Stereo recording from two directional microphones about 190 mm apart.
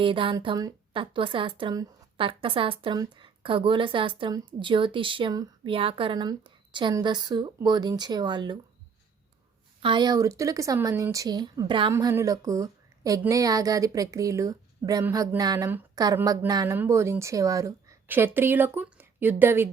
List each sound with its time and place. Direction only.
0.0 s a woman's voice: 25° right (ahead or behind)
9.8 s a woman's voice: 25° right (ahead or behind)